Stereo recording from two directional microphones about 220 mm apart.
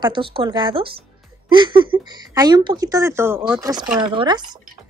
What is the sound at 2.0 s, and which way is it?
Speech, 15° right (ahead or behind).